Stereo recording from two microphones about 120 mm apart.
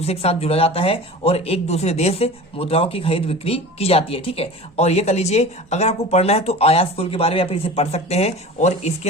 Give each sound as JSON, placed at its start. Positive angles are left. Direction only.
{"t": 0.0, "sound": "speech", "side_deg": 55}